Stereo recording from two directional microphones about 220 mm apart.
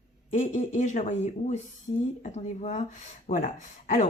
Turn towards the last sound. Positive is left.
turn(degrees=35)  # may be behind; listen again after turning